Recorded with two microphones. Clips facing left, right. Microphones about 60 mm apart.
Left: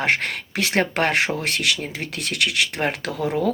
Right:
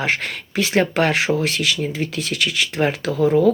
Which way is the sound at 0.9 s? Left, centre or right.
Left.